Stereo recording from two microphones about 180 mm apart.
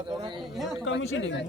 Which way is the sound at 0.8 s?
90° left.